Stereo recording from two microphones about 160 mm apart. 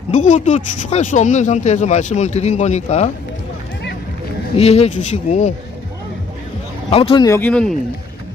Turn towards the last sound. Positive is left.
turn(degrees=5)  # may be behind; listen again after turning